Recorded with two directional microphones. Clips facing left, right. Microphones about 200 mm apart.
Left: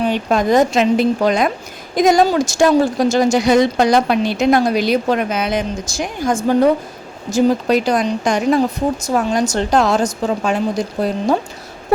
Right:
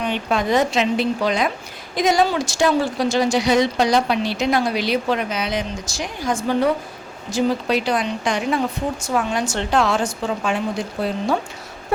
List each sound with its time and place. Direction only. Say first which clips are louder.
0.0 s speech: left 5 dB; 40° left (ahead or behind)